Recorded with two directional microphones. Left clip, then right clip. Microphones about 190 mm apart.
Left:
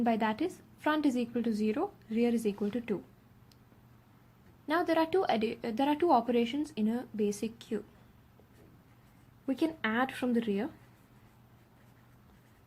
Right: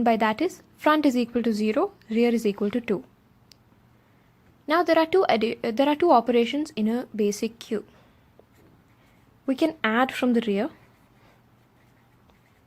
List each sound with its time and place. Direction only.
0.0 s a woman's voice: 40° right (ahead or behind)
4.7 s a woman's voice: 35° right (ahead or behind)
9.5 s a woman's voice: 40° right (ahead or behind)